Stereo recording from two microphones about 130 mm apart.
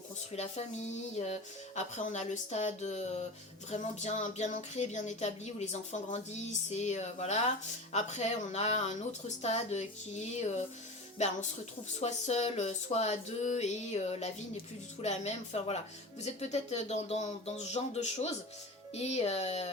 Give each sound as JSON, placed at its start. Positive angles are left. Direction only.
{"t": 0.3, "sound": "speech", "side_deg": 60}